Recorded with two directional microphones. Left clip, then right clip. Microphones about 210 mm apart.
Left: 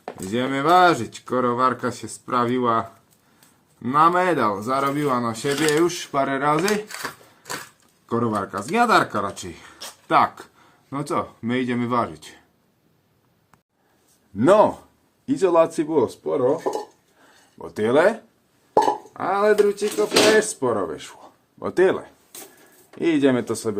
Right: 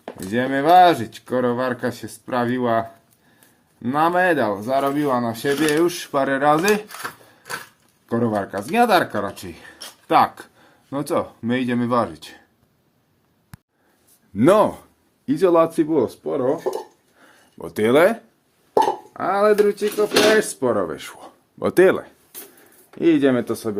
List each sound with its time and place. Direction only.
0.3 s speech: 25° right (ahead or behind)
3.8 s speech: 25° right (ahead or behind)
8.0 s speech: 25° right (ahead or behind)
14.3 s speech: 35° right (ahead or behind)
17.6 s speech: 40° right (ahead or behind)
23.0 s speech: 30° right (ahead or behind)